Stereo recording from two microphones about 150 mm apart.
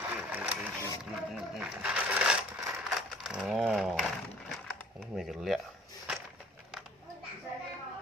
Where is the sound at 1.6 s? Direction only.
10° right (ahead or behind).